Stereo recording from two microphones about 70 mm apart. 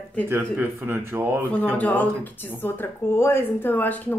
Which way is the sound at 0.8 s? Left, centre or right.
Right.